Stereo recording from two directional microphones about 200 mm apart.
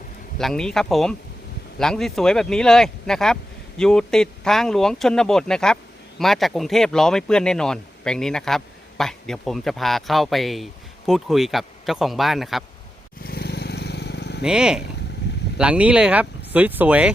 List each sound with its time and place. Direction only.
0.3 s speech: 5° left (ahead or behind)
13.2 s vehicle: 50° left (ahead or behind)
14.4 s speech: 5° right (ahead or behind)